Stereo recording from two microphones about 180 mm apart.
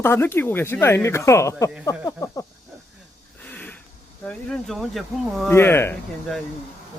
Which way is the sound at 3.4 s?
10° left (ahead or behind).